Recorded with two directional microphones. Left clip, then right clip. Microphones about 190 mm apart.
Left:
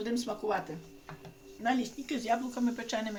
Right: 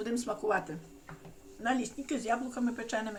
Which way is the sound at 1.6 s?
5° left (ahead or behind).